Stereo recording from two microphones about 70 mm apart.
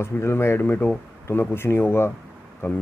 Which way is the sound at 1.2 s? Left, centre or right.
Left.